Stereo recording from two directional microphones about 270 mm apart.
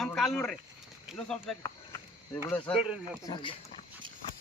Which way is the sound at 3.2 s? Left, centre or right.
Centre.